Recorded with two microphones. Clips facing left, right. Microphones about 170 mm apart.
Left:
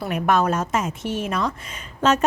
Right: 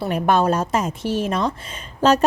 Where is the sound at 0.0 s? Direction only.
30° right (ahead or behind).